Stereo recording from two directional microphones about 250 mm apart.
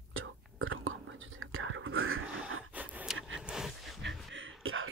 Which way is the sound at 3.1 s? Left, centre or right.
Right.